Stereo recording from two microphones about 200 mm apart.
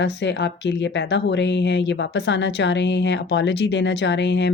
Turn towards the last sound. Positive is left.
turn(degrees=60)  # may be behind; listen again after turning